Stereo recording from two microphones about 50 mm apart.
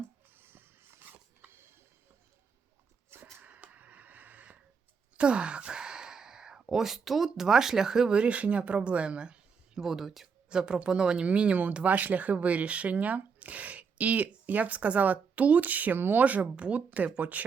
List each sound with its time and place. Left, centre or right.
0.3 s a sound: right
3.4 s a sound: right
5.1 s sigh: right; by 7.3 s centre
7.3 s speech: centre
9.8 s speech: centre
10.5 s speech: centre